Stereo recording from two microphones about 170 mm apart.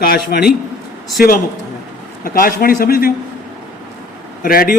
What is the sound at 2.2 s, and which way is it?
Speech, 55° left (ahead or behind).